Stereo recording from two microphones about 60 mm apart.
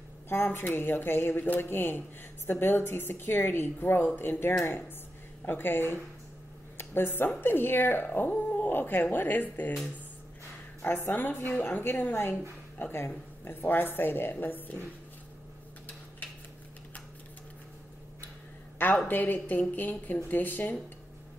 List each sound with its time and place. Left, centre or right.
0.3 s speech: left
10.8 s speech: left
19.0 s speech: left